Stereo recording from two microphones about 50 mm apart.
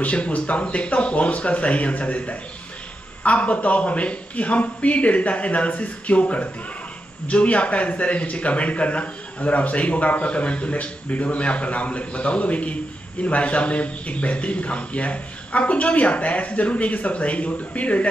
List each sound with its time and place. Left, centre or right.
0.0 s a man's voice: left